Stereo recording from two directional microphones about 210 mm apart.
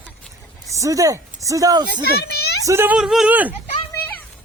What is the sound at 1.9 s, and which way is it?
Speech, 50° left (ahead or behind).